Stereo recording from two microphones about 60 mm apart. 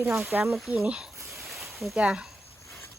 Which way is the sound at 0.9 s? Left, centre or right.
Centre.